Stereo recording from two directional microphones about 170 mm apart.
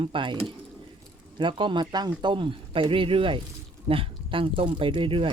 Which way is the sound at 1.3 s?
30° right (ahead or behind).